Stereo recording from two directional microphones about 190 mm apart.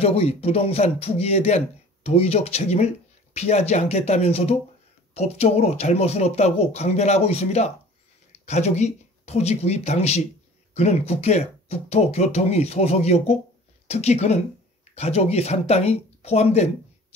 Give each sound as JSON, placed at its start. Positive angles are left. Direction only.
{"t": 0.0, "sound": "speech", "side_deg": 30}